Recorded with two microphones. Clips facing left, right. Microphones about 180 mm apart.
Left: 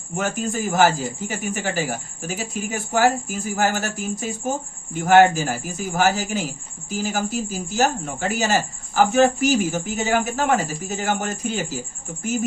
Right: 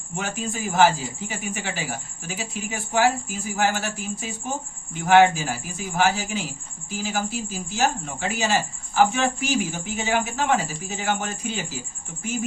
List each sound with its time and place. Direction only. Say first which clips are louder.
0.2 s speech: left 5 dB; 45° left (ahead or behind)